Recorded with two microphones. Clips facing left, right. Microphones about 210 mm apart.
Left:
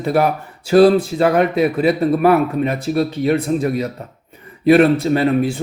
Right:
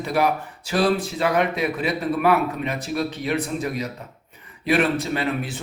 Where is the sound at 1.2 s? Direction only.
40° left (ahead or behind).